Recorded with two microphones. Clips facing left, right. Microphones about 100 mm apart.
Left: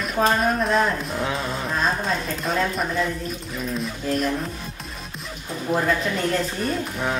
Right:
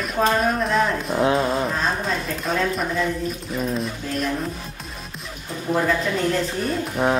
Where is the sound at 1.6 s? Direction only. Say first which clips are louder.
Even; centre (ahead or behind).